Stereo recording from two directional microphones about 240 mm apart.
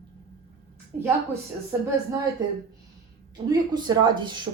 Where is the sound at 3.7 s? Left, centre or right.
Centre.